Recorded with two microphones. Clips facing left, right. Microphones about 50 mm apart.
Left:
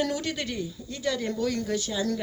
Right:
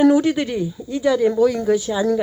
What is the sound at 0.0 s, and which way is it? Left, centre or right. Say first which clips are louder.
A woman's voice: right 14 dB; right.